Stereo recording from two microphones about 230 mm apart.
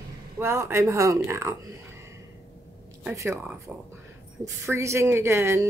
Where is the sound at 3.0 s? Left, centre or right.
Centre.